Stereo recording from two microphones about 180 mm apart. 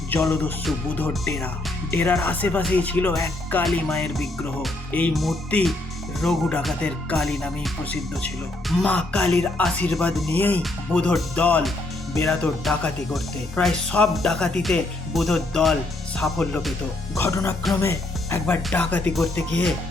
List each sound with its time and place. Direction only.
0.1 s speech: 5° left (ahead or behind)
17.2 s speech: 15° left (ahead or behind)